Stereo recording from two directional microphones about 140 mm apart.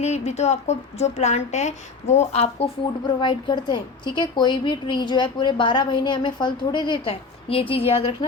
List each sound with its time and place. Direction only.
0.0 s a woman's voice: 50° left (ahead or behind)
3.2 s a woman's voice: 35° left (ahead or behind)